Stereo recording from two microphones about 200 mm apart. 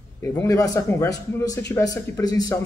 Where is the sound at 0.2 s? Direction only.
15° left (ahead or behind).